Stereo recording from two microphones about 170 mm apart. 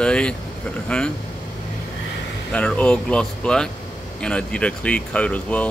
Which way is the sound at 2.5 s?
5° left (ahead or behind).